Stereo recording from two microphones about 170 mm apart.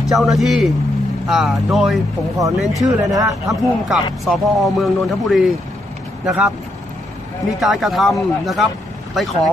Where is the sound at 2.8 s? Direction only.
20° right (ahead or behind).